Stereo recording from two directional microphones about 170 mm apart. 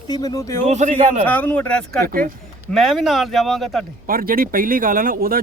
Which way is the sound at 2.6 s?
Centre (ahead or behind).